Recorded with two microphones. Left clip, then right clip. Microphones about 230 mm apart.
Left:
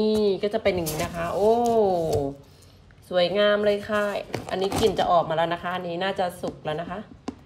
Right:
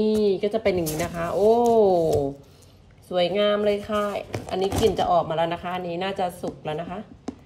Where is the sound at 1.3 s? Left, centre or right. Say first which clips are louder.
Right 2 dB; centre.